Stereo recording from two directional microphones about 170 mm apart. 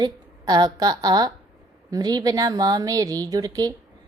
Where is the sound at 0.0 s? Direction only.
25° right (ahead or behind).